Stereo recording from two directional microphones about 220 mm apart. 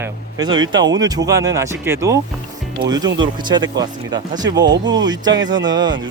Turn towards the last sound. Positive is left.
turn(degrees=-20)  # may be behind; listen again after turning